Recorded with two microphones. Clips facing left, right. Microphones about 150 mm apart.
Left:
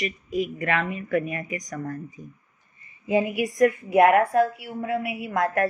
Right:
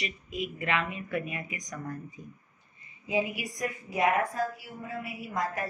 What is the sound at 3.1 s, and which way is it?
A woman's voice, 55° left (ahead or behind).